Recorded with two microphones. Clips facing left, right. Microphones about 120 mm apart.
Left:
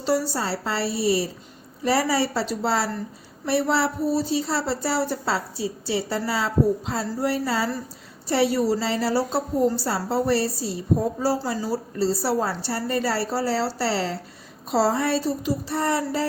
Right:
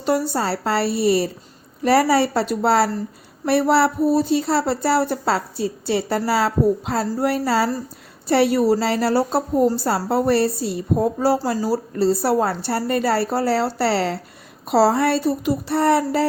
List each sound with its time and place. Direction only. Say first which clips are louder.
0.0 s a woman's voice: right 3 dB; 55° right (ahead or behind)